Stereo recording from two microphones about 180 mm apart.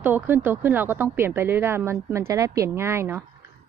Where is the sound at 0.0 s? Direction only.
10° right (ahead or behind).